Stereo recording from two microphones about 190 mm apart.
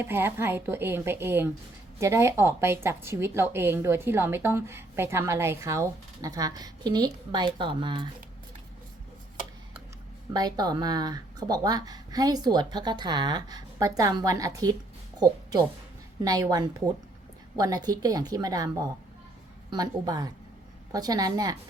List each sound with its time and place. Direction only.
0.0 s a woman's voice: 10° right (ahead or behind)
10.3 s speech: 20° right (ahead or behind)
16.2 s speech: 20° right (ahead or behind)